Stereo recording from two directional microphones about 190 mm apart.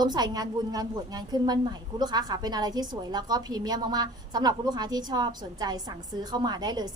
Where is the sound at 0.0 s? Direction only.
20° right (ahead or behind).